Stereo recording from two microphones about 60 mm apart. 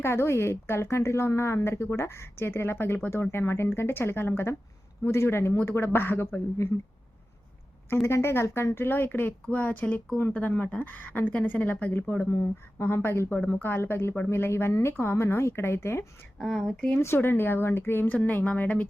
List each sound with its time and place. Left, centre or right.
0.0 s a woman's voice: left
8.0 s a woman's voice: left
11.9 s a woman's voice: left
16.4 s speech: centre
17.2 s a woman's voice: left
18.1 s speech: left